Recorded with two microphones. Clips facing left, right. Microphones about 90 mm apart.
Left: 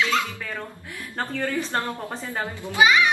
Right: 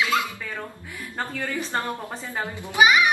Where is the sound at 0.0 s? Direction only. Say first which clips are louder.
Even; 5° right (ahead or behind).